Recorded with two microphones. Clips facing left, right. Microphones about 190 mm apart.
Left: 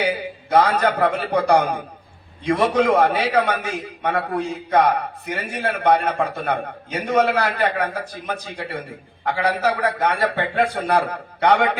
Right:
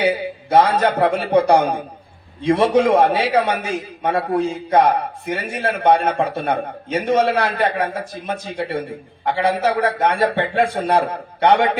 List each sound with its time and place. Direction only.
0.5 s a man's voice: 25° right (ahead or behind)